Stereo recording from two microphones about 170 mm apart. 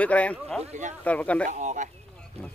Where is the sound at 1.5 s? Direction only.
45° right (ahead or behind).